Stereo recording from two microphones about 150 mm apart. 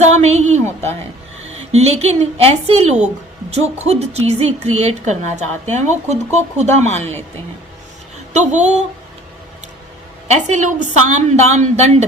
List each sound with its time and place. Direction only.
0.0 s a woman's voice: 50° right (ahead or behind)
1.7 s a woman's voice: 45° right (ahead or behind)
8.3 s a woman's voice: 50° right (ahead or behind)
10.2 s a woman's voice: 50° right (ahead or behind)